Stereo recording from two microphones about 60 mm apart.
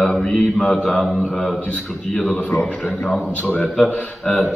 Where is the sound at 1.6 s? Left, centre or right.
Left.